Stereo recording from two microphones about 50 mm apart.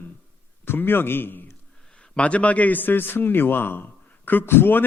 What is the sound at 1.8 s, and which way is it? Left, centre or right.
A man's voice, centre.